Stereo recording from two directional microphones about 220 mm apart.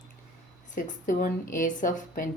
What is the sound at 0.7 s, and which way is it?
Speech, 35° left (ahead or behind).